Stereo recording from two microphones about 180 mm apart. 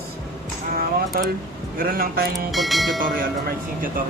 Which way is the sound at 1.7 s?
50° right (ahead or behind).